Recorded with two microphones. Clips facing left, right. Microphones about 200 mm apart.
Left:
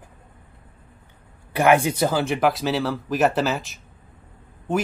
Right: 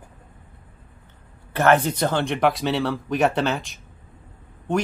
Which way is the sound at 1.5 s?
10° left (ahead or behind).